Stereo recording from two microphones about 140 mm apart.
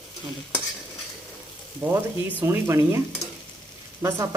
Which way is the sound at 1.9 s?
20° right (ahead or behind).